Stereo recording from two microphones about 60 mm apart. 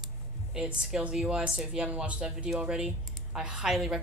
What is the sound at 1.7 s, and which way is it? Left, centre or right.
Speech, centre.